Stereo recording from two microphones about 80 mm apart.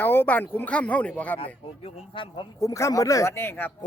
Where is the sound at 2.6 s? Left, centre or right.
Left.